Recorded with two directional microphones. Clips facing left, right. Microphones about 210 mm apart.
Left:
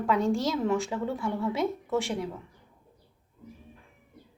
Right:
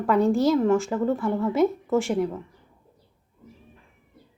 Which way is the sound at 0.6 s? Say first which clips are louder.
Right 6 dB; centre (ahead or behind).